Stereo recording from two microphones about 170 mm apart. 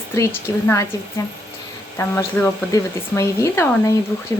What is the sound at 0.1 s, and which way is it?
Speech, 15° left (ahead or behind).